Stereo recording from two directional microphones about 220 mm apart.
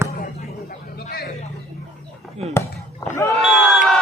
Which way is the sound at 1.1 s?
45° left (ahead or behind).